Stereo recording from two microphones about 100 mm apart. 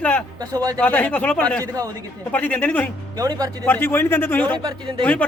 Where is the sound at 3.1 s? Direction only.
40° right (ahead or behind).